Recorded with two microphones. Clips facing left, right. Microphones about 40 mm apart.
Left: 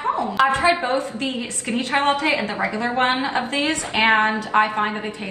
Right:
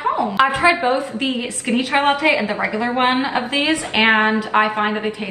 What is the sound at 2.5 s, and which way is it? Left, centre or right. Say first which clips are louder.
Speech: right 3 dB; centre.